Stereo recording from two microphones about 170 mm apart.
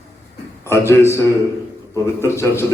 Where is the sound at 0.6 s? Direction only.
15° left (ahead or behind).